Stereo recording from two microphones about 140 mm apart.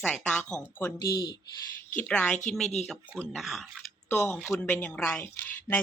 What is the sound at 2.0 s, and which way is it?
A woman's voice, 10° left (ahead or behind).